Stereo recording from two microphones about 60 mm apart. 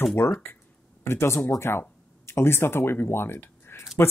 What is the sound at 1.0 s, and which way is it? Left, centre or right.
Speech, left.